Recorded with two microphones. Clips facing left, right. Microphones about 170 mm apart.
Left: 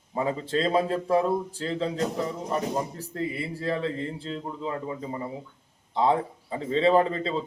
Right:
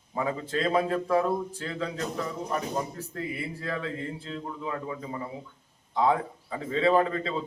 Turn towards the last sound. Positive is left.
turn(degrees=25)  # may be behind; listen again after turning